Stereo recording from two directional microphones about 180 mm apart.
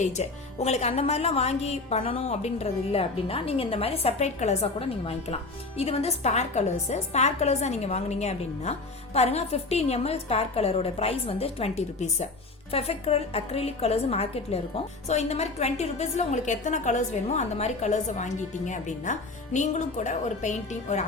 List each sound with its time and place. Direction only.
0.0 s a woman's voice: 40° left (ahead or behind)